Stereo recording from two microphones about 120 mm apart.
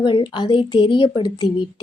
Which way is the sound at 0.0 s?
45° left (ahead or behind).